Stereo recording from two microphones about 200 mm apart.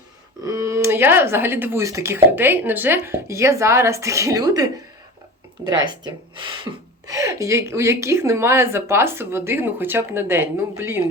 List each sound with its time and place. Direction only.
0.4 s speech: 15° right (ahead or behind)